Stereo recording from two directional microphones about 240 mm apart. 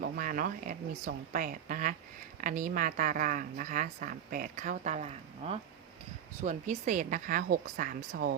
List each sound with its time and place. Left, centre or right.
0.0 s speech: right